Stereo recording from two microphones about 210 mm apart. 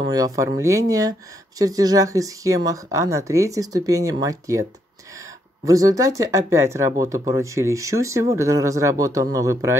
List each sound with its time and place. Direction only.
0.0 s speech: 15° right (ahead or behind)
5.7 s speech: 15° right (ahead or behind)